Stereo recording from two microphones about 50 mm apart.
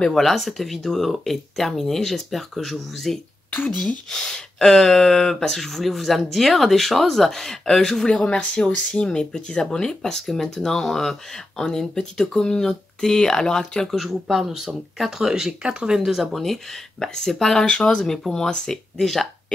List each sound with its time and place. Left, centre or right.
0.1 s speech: centre
4.1 s speech: centre
14.2 s speech: centre
16.0 s speech: centre